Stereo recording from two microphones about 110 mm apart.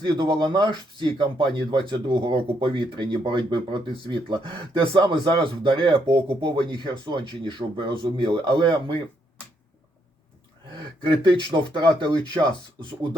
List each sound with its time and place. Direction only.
0.0 s speech: 45° right (ahead or behind)
11.0 s speech: 50° right (ahead or behind)
12.8 s chopping: 40° right (ahead or behind)